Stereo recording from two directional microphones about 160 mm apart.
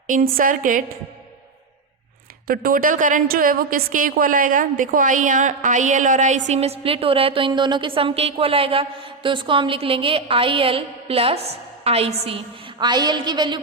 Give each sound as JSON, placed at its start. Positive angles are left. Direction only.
{"t": 0.1, "sound": "a woman's voice", "side_deg": -60}
{"t": 2.5, "sound": "a woman's voice", "side_deg": -65}